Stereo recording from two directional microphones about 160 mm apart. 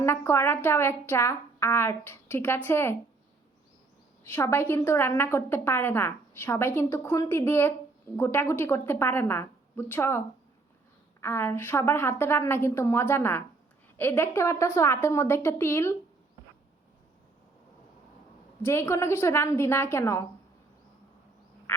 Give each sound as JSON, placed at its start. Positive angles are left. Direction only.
{"t": 0.0, "sound": "a woman's voice", "side_deg": 15}
{"t": 4.2, "sound": "a woman's voice", "side_deg": 15}
{"t": 18.6, "sound": "a woman's voice", "side_deg": 15}